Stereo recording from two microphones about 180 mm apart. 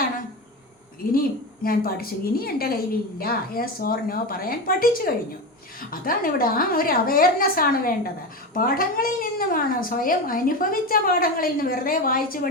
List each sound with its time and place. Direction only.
1.1 s a woman's voice: 55° left (ahead or behind)